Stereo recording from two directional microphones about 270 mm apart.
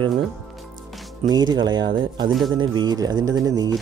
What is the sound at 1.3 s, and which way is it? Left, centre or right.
Speech, centre.